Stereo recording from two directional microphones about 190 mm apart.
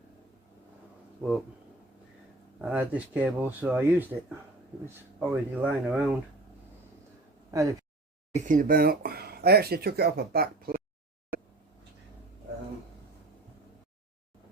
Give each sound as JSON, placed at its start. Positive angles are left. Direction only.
{"t": 2.6, "sound": "speech", "side_deg": -10}
{"t": 5.2, "sound": "speech", "side_deg": -10}
{"t": 7.5, "sound": "speech", "side_deg": -15}
{"t": 8.3, "sound": "speech", "side_deg": -40}